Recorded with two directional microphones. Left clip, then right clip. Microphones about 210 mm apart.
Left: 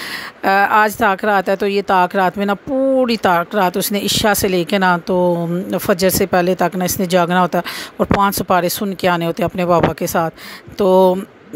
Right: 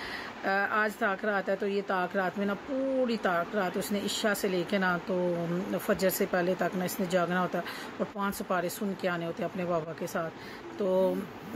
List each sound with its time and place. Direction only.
0.4 s speech: 50° left (ahead or behind)